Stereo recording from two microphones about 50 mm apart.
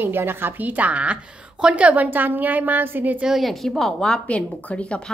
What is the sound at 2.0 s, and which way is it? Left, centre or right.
A woman's voice, right.